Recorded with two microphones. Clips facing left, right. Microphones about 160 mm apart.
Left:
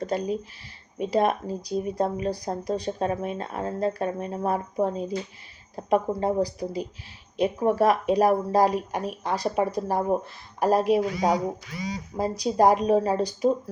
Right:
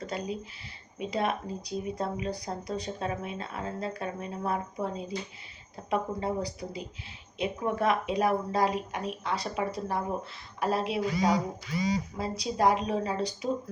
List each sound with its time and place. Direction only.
0.0 s speech: 40° left (ahead or behind)